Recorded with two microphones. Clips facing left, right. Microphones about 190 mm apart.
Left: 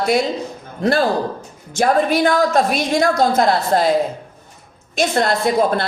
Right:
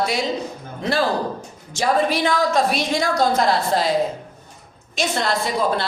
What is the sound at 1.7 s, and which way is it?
A woman's voice, 50° left (ahead or behind).